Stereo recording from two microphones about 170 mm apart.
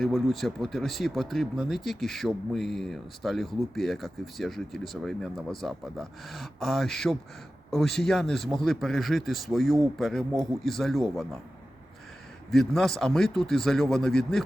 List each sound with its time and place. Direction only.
0.0 s speech: centre (ahead or behind)
10.3 s a man's voice: 20° right (ahead or behind)
10.6 s speech: centre (ahead or behind)
12.5 s speech: centre (ahead or behind)